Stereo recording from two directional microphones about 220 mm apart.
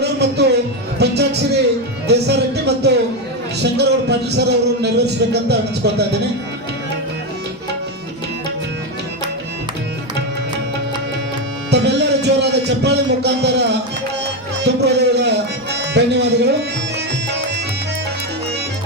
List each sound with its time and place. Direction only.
0.0 s music: 50° right (ahead or behind)
11.7 s music: 50° right (ahead or behind)